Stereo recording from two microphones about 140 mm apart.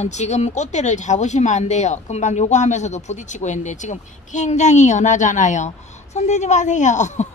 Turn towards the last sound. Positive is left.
turn(degrees=60)  # may be behind; listen again after turning